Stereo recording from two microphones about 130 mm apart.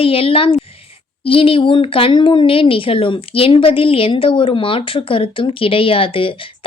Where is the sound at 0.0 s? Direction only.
45° left (ahead or behind).